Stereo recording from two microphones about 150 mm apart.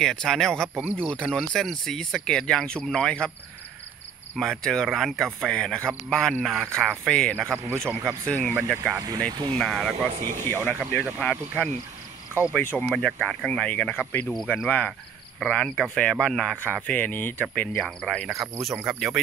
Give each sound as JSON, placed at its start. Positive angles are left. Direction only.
{"t": 0.0, "sound": "speech", "side_deg": 5}
{"t": 4.4, "sound": "speech", "side_deg": 5}
{"t": 7.4, "sound": "speech", "side_deg": -15}
{"t": 8.3, "sound": "speech", "side_deg": 10}
{"t": 8.9, "sound": "speech", "side_deg": -25}
{"t": 9.6, "sound": "speech", "side_deg": 0}
{"t": 10.1, "sound": "speech", "side_deg": -60}
{"t": 10.5, "sound": "speech", "side_deg": 15}